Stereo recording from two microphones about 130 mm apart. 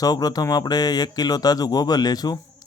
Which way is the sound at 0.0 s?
30° left (ahead or behind).